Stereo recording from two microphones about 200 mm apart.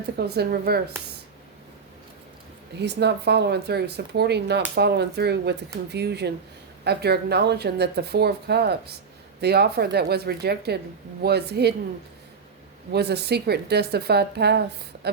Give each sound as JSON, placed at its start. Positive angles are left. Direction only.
{"t": 0.3, "sound": "speech", "side_deg": -50}
{"t": 2.8, "sound": "speech", "side_deg": -60}
{"t": 12.9, "sound": "speech", "side_deg": -55}